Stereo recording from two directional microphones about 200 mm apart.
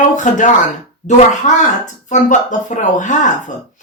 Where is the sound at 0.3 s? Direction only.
35° left (ahead or behind).